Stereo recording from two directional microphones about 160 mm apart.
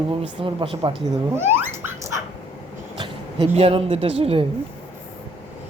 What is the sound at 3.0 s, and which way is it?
Speech, 35° right (ahead or behind).